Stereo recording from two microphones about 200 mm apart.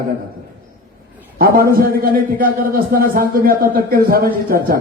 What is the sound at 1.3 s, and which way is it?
A man's voice, 50° right (ahead or behind).